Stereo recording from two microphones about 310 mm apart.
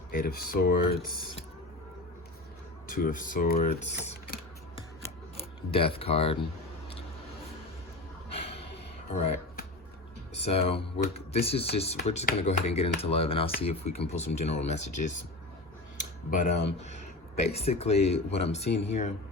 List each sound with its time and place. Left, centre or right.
0.1 s speech: left
2.9 s speech: left
5.7 s speech: centre
8.3 s a sound: centre
10.4 s speech: centre
16.3 s speech: left